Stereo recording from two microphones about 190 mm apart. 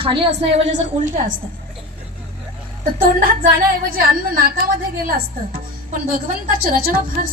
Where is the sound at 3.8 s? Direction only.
50° right (ahead or behind).